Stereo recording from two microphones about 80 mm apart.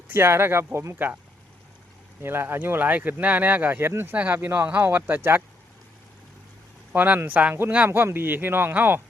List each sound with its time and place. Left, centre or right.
0.1 s speech: right
0.9 s speech: right
2.2 s speech: right
6.9 s speech: centre
7.9 s speech: right